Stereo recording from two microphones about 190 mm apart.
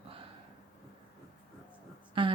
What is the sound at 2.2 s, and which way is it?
Speech, 25° right (ahead or behind).